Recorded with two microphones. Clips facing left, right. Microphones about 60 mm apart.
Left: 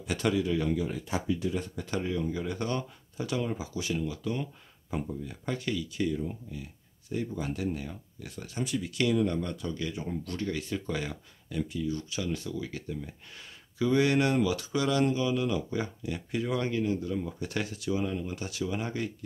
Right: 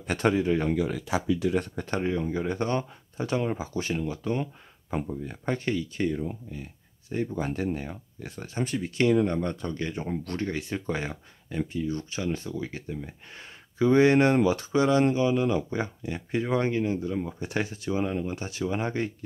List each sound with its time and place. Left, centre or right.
0.0 s speech: right
0.7 s speech: right
1.8 s speech: right